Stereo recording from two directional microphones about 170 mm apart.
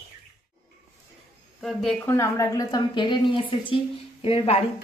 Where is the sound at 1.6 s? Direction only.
Centre (ahead or behind).